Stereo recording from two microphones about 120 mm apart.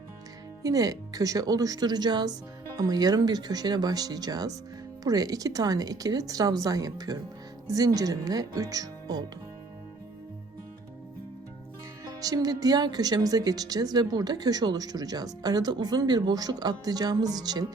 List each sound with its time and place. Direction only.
0.6 s speech: 30° right (ahead or behind)
12.0 s speech: 30° right (ahead or behind)